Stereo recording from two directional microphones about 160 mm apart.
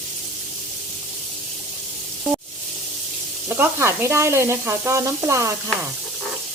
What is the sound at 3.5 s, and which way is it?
Sizzle, 15° right (ahead or behind).